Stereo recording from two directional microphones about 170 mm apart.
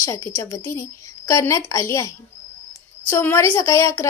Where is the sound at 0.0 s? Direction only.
15° left (ahead or behind).